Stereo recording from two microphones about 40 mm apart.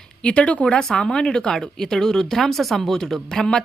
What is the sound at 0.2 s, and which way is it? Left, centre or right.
A woman's voice, left.